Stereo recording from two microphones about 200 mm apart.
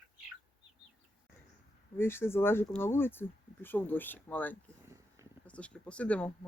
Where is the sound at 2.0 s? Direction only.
10° left (ahead or behind).